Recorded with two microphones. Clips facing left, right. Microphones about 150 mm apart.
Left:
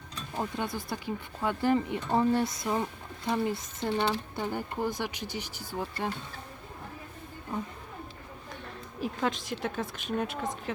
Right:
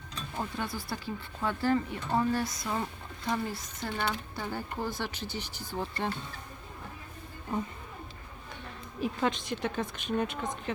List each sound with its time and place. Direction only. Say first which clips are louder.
0.3 s speech: left 3 dB; 20° left (ahead or behind)
9.0 s a woman's voice: right 1 dB; centre (ahead or behind)